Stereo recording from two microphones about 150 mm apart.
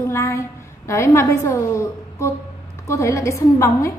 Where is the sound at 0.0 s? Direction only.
20° left (ahead or behind).